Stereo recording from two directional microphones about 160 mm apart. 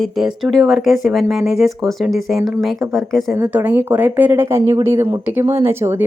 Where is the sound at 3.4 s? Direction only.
10° right (ahead or behind).